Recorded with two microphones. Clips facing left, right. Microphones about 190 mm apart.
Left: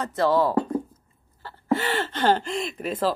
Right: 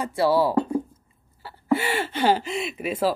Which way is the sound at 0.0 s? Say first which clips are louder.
Right 1 dB; 10° right (ahead or behind).